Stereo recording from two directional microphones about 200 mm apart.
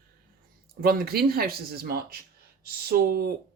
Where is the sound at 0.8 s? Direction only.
50° right (ahead or behind).